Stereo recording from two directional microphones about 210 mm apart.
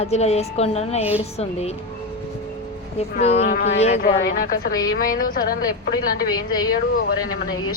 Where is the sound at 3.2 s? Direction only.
30° left (ahead or behind).